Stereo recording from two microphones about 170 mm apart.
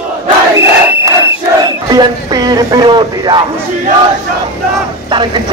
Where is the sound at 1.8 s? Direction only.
25° right (ahead or behind).